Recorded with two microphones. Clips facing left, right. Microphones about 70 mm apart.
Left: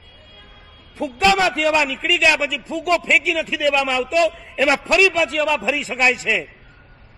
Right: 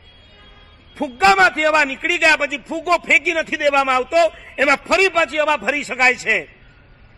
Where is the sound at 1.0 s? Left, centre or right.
Right.